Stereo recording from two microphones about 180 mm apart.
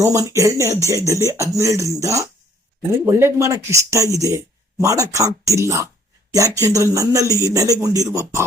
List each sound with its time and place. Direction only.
0.0 s speech: 15° right (ahead or behind)